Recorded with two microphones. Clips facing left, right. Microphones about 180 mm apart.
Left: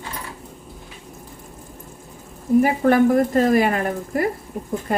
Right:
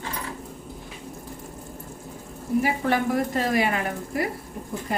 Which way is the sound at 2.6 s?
50° left (ahead or behind).